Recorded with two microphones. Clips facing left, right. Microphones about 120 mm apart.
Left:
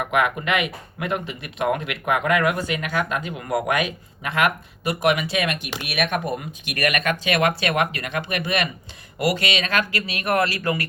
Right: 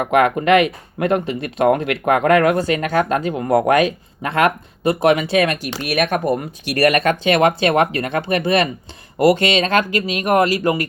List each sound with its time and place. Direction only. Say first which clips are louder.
0.0 s speech: right 7 dB; 40° right (ahead or behind)
10.1 s speech: right 7 dB; 15° right (ahead or behind)